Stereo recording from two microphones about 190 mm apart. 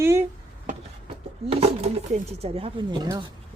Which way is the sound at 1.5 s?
30° right (ahead or behind).